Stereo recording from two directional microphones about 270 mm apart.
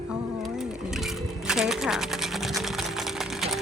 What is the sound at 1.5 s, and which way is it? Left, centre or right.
Sewing machine, centre.